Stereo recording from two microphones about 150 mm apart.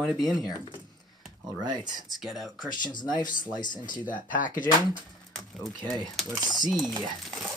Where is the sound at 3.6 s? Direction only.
30° left (ahead or behind).